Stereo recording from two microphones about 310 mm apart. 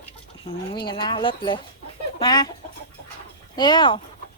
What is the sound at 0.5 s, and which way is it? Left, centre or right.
Speech, centre.